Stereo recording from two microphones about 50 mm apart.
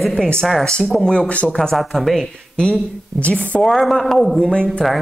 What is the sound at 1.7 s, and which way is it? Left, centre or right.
Speech, centre.